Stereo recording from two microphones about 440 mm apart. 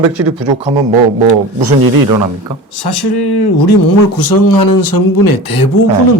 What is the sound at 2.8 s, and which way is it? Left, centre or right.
Speech, left.